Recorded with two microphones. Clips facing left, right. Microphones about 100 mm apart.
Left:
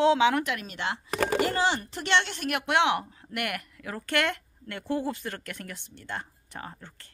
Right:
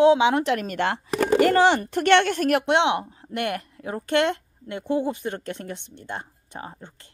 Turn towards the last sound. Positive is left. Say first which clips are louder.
# right 3 dB
turn(degrees=-20)  # may be behind; listen again after turning